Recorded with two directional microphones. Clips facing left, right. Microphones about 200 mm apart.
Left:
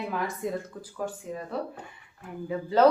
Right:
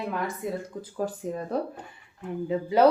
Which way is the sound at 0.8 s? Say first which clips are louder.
Right 4 dB; 35° right (ahead or behind).